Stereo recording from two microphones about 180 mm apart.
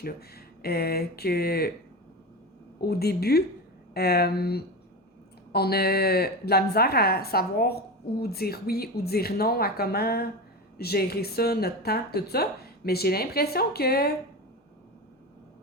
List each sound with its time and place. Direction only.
0.0 s speech: 60° left (ahead or behind)
2.8 s speech: 60° left (ahead or behind)